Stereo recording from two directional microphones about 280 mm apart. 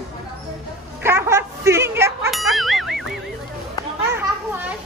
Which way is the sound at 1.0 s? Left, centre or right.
Centre.